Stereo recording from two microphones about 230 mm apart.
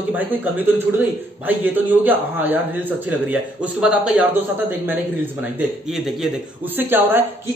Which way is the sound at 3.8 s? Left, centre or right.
Centre.